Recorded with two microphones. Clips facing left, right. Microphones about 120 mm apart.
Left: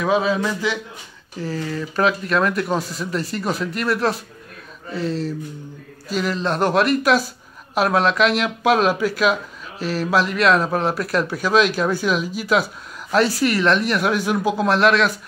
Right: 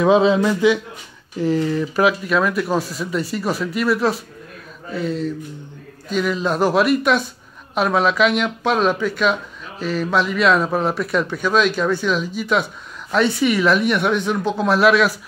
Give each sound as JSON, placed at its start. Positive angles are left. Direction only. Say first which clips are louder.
{"t": 0.0, "sound": "a man's voice", "louder": "right 5 dB", "side_deg": -25}